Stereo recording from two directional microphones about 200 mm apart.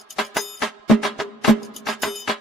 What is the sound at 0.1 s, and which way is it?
Music, centre (ahead or behind).